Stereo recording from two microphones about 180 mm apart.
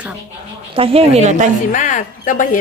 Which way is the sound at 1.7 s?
45° left (ahead or behind).